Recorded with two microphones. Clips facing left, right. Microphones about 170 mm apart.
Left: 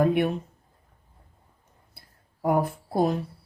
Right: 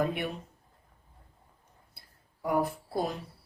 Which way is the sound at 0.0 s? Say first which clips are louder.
Left 8 dB; 55° left (ahead or behind).